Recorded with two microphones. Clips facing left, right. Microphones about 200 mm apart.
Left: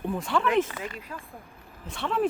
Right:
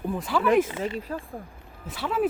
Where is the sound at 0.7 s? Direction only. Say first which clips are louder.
Right 7 dB; 25° right (ahead or behind).